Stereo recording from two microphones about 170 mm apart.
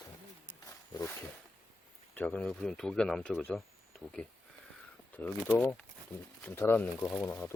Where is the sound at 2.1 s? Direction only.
10° left (ahead or behind).